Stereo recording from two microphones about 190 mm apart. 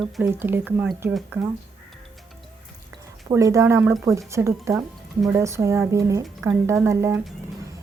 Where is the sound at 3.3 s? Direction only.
15° right (ahead or behind).